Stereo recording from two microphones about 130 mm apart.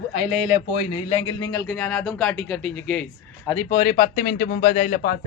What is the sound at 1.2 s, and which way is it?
Speech, 35° left (ahead or behind).